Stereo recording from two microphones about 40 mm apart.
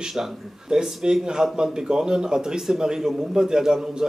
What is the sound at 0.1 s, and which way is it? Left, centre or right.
A man's voice, centre.